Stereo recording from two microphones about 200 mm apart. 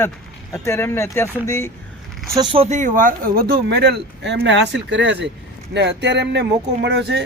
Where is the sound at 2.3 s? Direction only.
25° right (ahead or behind); by 7.2 s 60° right (ahead or behind).